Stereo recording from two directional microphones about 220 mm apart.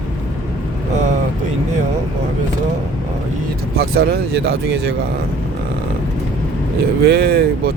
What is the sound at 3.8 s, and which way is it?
Speech, 45° right (ahead or behind).